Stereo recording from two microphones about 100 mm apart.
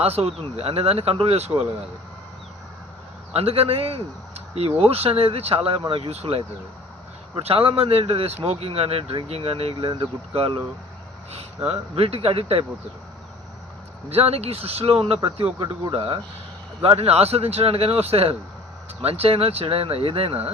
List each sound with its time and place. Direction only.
0.0 s speech: 90° right
3.3 s speech: 80° right
6.1 s speech: 90° right
7.3 s speech: 70° right (ahead or behind)
8.4 s speech: 90° right
9.9 s speech: 65° right (ahead or behind)
11.3 s speech: 90° right
14.1 s speech: 90° right; by 15.4 s 70° right (ahead or behind)
15.9 s speech: 60° right (ahead or behind)
16.8 s speech: 85° right